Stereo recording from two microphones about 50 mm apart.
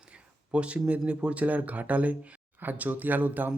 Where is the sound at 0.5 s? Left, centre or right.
Right.